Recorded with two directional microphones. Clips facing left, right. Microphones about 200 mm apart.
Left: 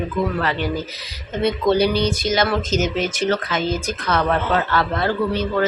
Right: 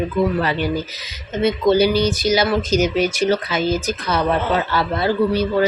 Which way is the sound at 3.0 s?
10° right (ahead or behind).